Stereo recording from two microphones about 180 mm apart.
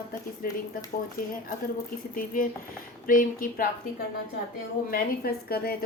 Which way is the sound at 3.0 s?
50° left (ahead or behind).